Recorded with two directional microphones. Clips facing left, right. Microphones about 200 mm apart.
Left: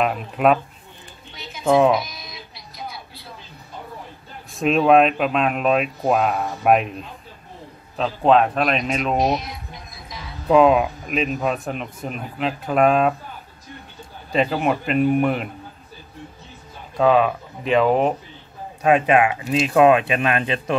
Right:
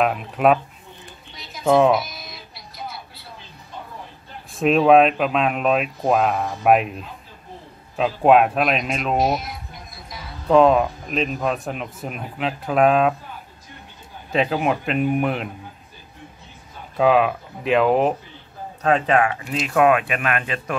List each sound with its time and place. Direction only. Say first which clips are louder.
0.0 s speech: even; centre (ahead or behind)
1.3 s music: even; centre (ahead or behind)
4.5 s speech: right 1 dB; centre (ahead or behind)
14.3 s speech: even; centre (ahead or behind)
16.9 s speech: even; 5° right (ahead or behind)
18.8 s speech: left 2 dB; 10° left (ahead or behind)